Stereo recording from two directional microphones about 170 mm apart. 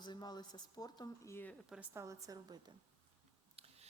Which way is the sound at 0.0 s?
25° left (ahead or behind).